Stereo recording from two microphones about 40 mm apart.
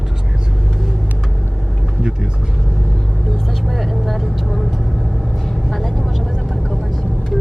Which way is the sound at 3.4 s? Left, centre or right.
Centre.